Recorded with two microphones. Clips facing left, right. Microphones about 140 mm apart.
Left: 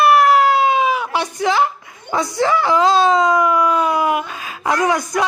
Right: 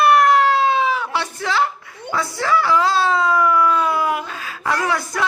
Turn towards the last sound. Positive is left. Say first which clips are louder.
# left 4 dB
turn(degrees=20)  # may be behind; listen again after turning